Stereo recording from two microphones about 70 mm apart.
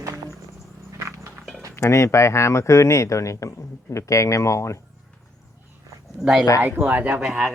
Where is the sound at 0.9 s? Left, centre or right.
Right.